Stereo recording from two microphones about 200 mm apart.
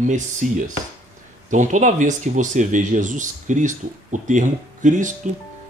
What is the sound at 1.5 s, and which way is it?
Speech, 40° right (ahead or behind).